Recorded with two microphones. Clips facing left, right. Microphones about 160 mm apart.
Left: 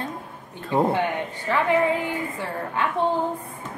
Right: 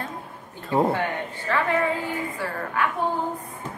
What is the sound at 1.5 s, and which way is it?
A woman's voice, 15° left (ahead or behind).